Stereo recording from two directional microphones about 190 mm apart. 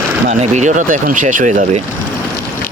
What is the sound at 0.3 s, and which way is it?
Speech, 40° right (ahead or behind).